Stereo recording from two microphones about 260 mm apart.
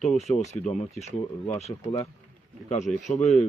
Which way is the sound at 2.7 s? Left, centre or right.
Left.